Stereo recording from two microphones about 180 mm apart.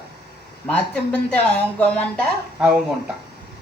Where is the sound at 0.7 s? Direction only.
5° left (ahead or behind).